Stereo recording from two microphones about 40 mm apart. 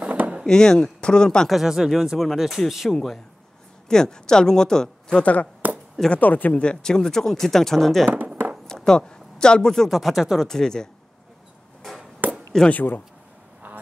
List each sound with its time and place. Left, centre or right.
0.5 s speech: centre
1.5 s speech: centre
3.9 s speech: centre
5.2 s speech: left
6.5 s speech: left; by 8.1 s centre
8.8 s speech: centre
9.8 s speech: centre
10.3 s speech: centre
12.2 s chop: right
12.6 s speech: left